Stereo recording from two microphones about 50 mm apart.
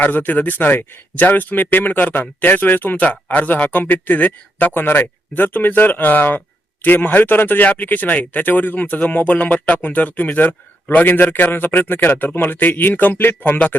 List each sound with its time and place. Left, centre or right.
0.0 s speech: left